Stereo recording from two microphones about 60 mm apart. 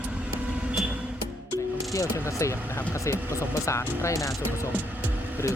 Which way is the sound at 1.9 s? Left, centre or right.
Left.